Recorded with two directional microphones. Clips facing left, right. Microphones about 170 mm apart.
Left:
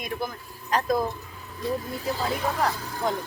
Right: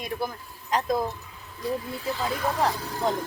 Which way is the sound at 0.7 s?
20° right (ahead or behind).